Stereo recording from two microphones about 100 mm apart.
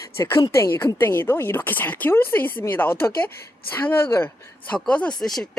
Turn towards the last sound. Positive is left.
turn(degrees=5)  # may be behind; listen again after turning